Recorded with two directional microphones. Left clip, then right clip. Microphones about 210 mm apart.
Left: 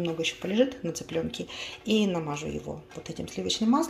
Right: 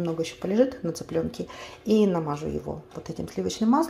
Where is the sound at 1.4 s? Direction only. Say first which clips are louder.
Even; 40° right (ahead or behind).